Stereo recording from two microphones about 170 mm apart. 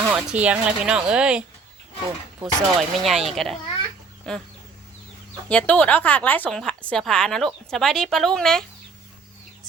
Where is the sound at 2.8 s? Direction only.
Centre (ahead or behind).